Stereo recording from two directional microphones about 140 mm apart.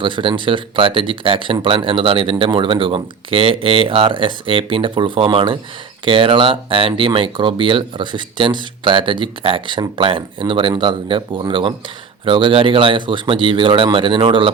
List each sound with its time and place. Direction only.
0.0 s speech: 35° right (ahead or behind)